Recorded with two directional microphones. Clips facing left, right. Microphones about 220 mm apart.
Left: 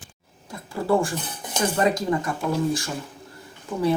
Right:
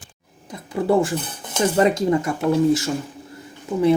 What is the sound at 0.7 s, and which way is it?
Speech, 20° right (ahead or behind).